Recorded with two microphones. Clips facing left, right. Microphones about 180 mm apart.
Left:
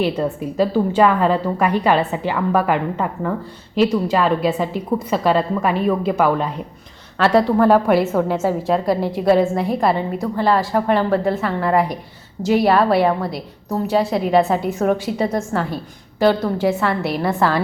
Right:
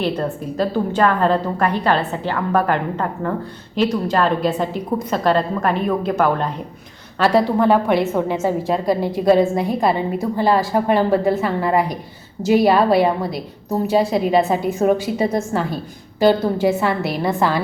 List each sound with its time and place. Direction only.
0.0 s a woman's voice: 10° left (ahead or behind)
17.2 s a woman's voice: 20° right (ahead or behind)